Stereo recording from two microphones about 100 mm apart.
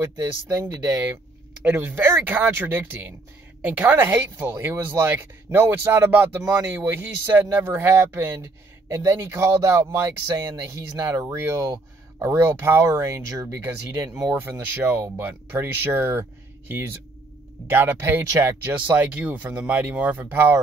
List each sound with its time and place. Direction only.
0.0 s speech: 30° right (ahead or behind)
14.8 s speech: 20° right (ahead or behind)